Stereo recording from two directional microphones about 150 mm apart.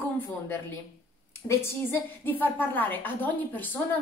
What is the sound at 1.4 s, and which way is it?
A woman's voice, 15° left (ahead or behind).